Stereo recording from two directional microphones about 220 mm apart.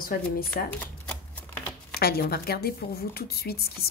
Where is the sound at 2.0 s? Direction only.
45° left (ahead or behind).